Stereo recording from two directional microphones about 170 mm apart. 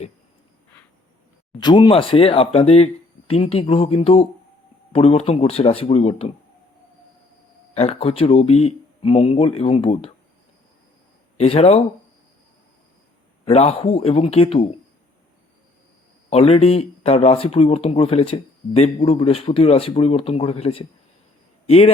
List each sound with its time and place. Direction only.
1.5 s speech: 25° left (ahead or behind)
7.8 s speech: 35° left (ahead or behind)
11.3 s speech: 35° left (ahead or behind)
13.4 s speech: 35° left (ahead or behind)
16.3 s speech: 35° left (ahead or behind)